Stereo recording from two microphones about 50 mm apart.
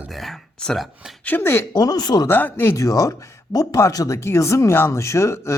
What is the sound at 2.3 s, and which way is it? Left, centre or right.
Speech, left.